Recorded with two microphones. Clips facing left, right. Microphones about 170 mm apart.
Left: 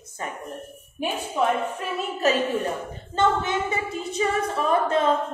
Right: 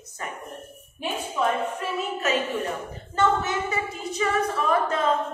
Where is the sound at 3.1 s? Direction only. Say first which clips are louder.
Left 1 dB; 25° left (ahead or behind).